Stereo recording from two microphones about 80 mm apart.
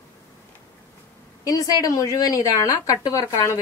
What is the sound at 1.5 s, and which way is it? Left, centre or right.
A woman's voice, left.